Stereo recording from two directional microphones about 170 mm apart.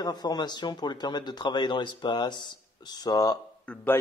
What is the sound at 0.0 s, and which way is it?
A man's voice, 25° left (ahead or behind).